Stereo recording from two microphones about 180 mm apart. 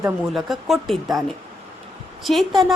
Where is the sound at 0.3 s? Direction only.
Centre (ahead or behind).